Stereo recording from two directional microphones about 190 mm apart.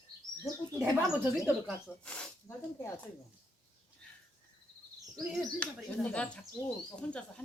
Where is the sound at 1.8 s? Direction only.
5° left (ahead or behind).